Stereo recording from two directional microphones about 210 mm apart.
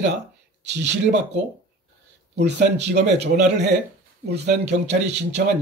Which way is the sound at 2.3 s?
55° right (ahead or behind).